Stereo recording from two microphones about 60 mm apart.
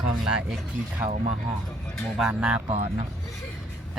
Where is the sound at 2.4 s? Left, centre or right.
Centre.